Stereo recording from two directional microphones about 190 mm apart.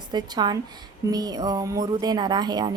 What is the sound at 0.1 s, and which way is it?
A woman's voice, 20° right (ahead or behind).